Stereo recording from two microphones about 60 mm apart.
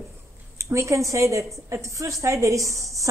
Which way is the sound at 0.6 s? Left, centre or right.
Right.